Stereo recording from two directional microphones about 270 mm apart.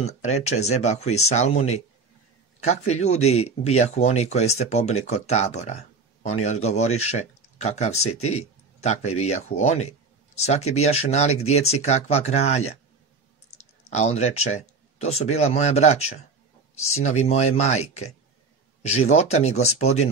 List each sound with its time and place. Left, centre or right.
0.5 s speech: left
2.6 s speech: left
13.9 s speech: left